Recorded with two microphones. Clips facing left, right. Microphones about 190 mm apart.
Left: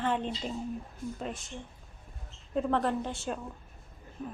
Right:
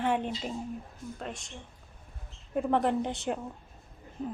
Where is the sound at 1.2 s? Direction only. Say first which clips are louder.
Even; centre (ahead or behind).